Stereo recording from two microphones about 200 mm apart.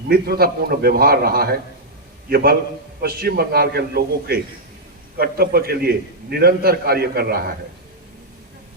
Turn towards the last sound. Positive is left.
turn(degrees=-50)  # may be behind; listen again after turning